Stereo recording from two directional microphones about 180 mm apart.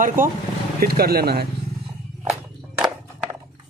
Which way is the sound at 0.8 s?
60° right (ahead or behind).